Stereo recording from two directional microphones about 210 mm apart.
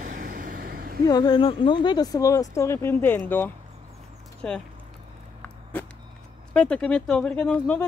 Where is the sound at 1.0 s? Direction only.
20° left (ahead or behind).